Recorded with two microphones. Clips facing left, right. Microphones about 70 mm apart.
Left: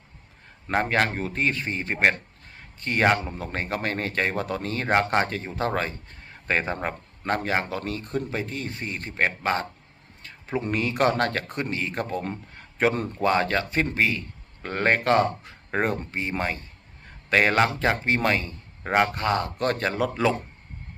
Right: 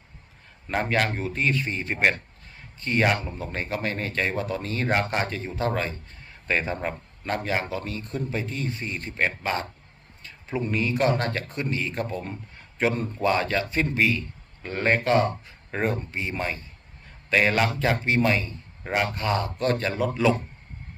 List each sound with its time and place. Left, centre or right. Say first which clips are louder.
0.7 s speech: left 2 dB; left
10.2 s speech: left 1 dB; left
13.2 s a man's voice: left 1 dB; left